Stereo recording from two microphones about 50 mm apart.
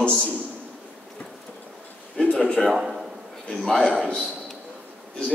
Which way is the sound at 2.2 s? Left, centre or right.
Left.